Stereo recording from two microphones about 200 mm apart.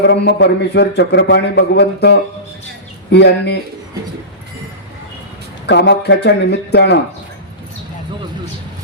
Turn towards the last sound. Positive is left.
turn(degrees=60)  # may be behind; listen again after turning